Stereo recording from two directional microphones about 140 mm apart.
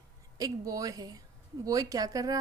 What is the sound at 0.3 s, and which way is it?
Speech, 25° right (ahead or behind).